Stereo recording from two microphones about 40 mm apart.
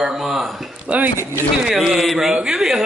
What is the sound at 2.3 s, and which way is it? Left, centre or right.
Speech, right.